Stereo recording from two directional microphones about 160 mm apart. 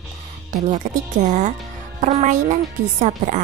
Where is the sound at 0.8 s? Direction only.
50° right (ahead or behind).